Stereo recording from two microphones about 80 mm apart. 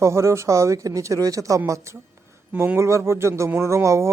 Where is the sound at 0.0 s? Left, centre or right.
Right.